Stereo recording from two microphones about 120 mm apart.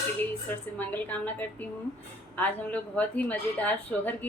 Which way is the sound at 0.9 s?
15° left (ahead or behind).